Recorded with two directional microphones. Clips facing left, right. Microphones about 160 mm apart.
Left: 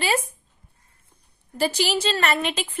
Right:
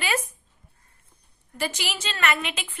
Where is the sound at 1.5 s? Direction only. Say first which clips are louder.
Left 8 dB; 35° left (ahead or behind).